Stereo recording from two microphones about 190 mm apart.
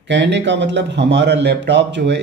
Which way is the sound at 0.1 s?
70° right (ahead or behind).